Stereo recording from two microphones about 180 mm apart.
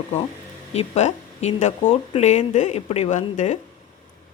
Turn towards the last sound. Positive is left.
turn(degrees=45)  # may be behind; listen again after turning